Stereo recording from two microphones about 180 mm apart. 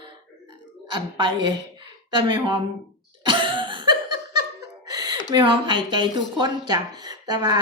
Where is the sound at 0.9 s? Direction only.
25° right (ahead or behind).